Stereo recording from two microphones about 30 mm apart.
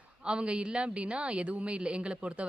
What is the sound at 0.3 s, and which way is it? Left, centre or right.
Speech, right.